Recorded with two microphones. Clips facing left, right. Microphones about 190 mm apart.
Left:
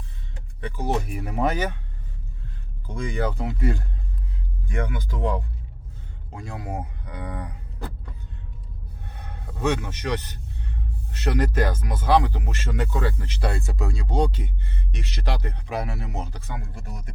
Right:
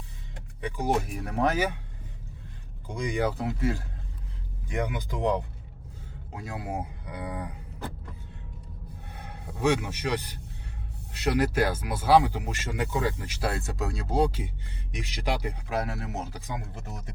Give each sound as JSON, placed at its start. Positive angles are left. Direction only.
{"t": 0.6, "sound": "speech", "side_deg": -15}
{"t": 1.1, "sound": "speech", "side_deg": 5}
{"t": 2.8, "sound": "speech", "side_deg": -15}
{"t": 3.3, "sound": "speech", "side_deg": 0}
{"t": 4.7, "sound": "speech", "side_deg": -15}
{"t": 6.3, "sound": "speech", "side_deg": -5}
{"t": 9.1, "sound": "a man's voice", "side_deg": -10}
{"t": 16.4, "sound": "speech", "side_deg": -15}